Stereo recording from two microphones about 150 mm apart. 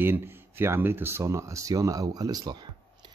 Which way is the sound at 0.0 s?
15° right (ahead or behind).